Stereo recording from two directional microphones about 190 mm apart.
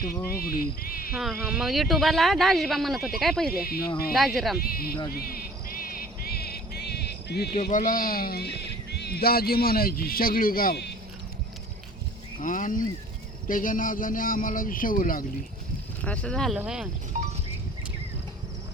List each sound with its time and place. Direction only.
0.3 s speech: 50° left (ahead or behind)
1.1 s speech: 5° right (ahead or behind)
3.5 s speech: 50° left (ahead or behind)
5.8 s music: 55° left (ahead or behind)
7.7 s speech: 45° left (ahead or behind)
12.4 s speech: 45° left (ahead or behind)
16.0 s speech: 5° left (ahead or behind)